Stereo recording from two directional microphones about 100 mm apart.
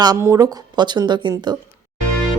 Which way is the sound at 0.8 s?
50° right (ahead or behind).